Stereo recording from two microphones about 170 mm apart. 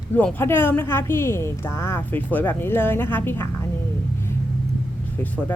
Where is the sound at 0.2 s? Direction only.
10° left (ahead or behind).